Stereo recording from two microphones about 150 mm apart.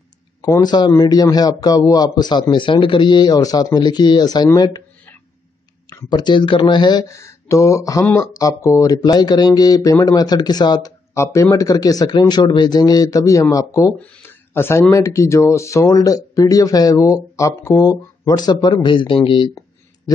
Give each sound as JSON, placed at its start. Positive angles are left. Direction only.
{"t": 0.4, "sound": "speech", "side_deg": 25}
{"t": 5.9, "sound": "speech", "side_deg": 25}
{"t": 13.9, "sound": "speech", "side_deg": 10}